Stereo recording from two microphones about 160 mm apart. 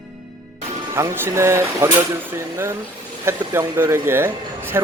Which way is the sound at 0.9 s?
15° right (ahead or behind).